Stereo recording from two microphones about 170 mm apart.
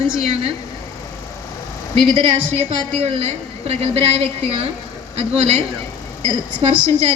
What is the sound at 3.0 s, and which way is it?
A woman's voice, 35° right (ahead or behind).